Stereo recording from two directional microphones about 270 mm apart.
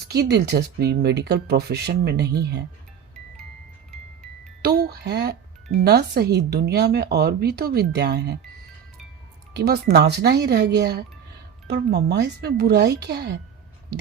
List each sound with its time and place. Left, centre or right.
0.1 s speech: right
4.6 s a sound: right
5.8 s speech: right
9.6 s speech: right